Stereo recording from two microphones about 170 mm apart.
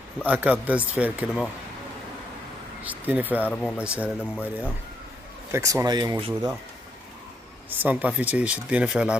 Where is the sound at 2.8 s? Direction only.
10° right (ahead or behind).